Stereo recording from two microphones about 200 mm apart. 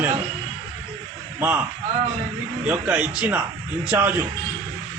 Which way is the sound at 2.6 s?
5° right (ahead or behind).